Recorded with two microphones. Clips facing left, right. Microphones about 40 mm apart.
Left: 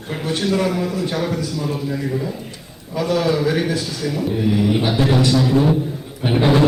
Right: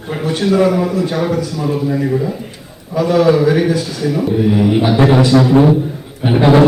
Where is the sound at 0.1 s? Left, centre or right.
Centre.